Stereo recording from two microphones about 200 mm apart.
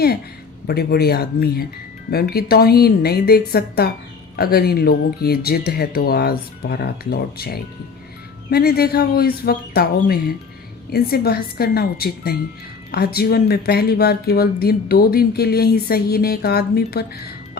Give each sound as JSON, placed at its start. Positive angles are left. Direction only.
{"t": 0.7, "sound": "speech", "side_deg": 50}